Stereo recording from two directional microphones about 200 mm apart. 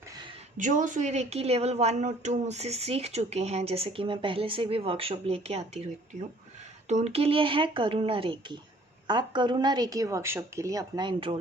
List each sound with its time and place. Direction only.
0.5 s a woman's voice: 40° right (ahead or behind)
6.8 s speech: 35° right (ahead or behind)